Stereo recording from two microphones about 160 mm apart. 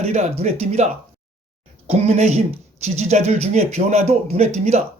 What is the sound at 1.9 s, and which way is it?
Speech, 45° right (ahead or behind).